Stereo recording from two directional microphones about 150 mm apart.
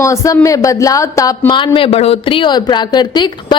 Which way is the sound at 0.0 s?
20° left (ahead or behind).